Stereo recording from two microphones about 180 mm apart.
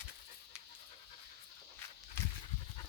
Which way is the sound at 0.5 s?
5° right (ahead or behind).